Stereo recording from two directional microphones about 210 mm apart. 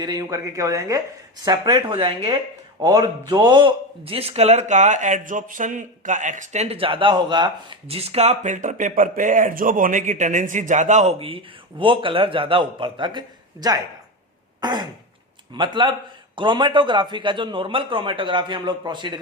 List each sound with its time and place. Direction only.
0.0 s speech: 20° right (ahead or behind)
1.9 s speech: 25° right (ahead or behind)
14.6 s throat clearing: 20° right (ahead or behind)
15.5 s speech: 25° right (ahead or behind)